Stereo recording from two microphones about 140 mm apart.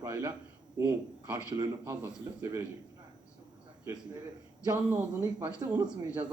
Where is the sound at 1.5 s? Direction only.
30° right (ahead or behind).